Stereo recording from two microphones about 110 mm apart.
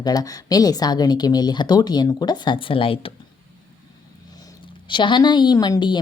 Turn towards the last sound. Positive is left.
turn(degrees=40)  # may be behind; listen again after turning